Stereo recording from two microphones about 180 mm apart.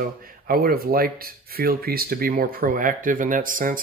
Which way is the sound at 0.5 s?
55° right (ahead or behind).